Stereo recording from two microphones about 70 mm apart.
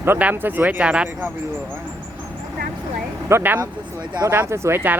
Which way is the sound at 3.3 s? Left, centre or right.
Right.